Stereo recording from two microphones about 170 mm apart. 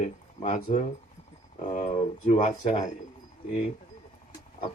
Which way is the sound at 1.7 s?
45° left (ahead or behind).